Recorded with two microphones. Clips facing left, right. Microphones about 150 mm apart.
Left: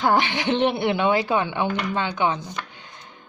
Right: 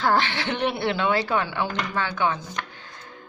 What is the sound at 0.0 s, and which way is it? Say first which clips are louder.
Speech: left 2 dB; 15° left (ahead or behind).